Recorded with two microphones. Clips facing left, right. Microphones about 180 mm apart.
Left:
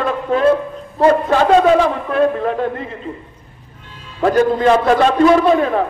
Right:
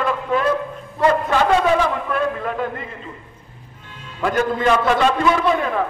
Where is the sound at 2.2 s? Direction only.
35° left (ahead or behind).